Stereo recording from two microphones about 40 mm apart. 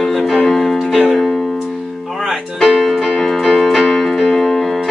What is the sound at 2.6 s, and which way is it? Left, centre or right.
Speech, centre.